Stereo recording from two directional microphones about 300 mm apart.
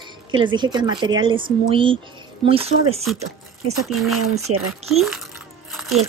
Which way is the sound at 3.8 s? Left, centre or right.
Centre.